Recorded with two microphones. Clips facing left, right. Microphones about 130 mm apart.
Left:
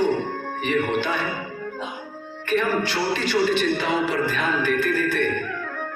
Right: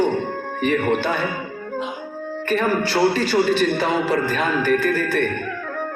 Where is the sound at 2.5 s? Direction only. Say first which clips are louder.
Right 2 dB; 45° right (ahead or behind).